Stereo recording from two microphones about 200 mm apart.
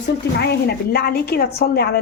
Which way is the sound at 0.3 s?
55° left (ahead or behind).